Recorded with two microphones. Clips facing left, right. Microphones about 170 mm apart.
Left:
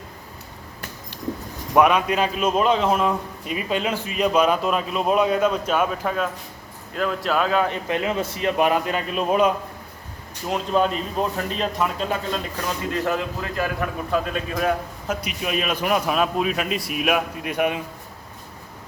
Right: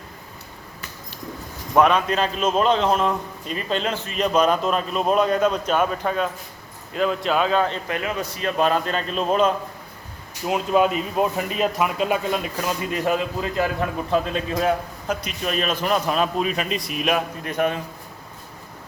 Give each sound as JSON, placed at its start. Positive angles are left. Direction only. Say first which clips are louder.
{"t": 1.7, "sound": "a man's voice", "louder": "even", "side_deg": 10}
{"t": 7.9, "sound": "a man's voice", "louder": "left 3 dB", "side_deg": 20}
{"t": 10.4, "sound": "a man's voice", "louder": "right 2 dB", "side_deg": -5}
{"t": 15.0, "sound": "a man's voice", "louder": "even", "side_deg": 5}